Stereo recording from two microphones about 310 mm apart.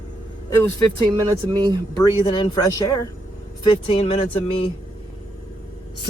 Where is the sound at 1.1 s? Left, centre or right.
Centre.